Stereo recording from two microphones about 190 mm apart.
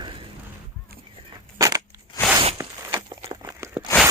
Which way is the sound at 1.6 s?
20° right (ahead or behind).